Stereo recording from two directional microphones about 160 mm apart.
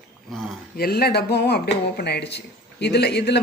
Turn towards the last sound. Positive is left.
turn(degrees=90)